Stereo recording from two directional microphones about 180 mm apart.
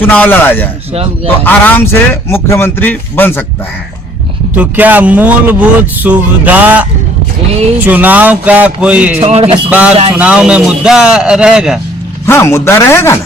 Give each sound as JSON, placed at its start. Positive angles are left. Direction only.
{"t": 0.0, "sound": "a man's voice", "side_deg": 10}
{"t": 4.5, "sound": "speech", "side_deg": -10}
{"t": 7.9, "sound": "speech", "side_deg": -10}
{"t": 9.2, "sound": "music", "side_deg": -35}
{"t": 9.6, "sound": "a man's voice", "side_deg": -10}
{"t": 12.2, "sound": "a man's voice", "side_deg": 15}